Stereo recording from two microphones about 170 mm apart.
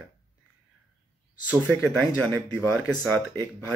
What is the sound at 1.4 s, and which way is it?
Speech, 10° left (ahead or behind).